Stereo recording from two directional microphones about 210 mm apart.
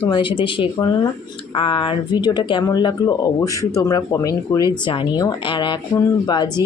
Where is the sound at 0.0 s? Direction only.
25° left (ahead or behind).